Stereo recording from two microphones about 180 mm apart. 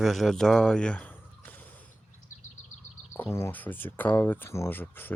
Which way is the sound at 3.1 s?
15° left (ahead or behind).